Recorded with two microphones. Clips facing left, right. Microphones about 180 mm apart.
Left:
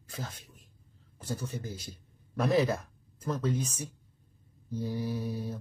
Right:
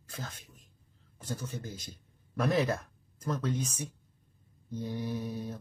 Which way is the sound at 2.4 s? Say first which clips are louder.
Left 2 dB; 5° left (ahead or behind).